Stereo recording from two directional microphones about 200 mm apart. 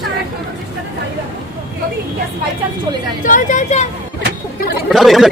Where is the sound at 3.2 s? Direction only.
40° left (ahead or behind).